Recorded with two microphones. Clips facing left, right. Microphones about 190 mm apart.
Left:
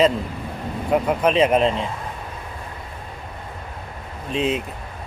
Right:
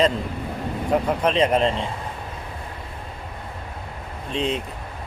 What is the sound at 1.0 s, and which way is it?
Speech, 5° left (ahead or behind).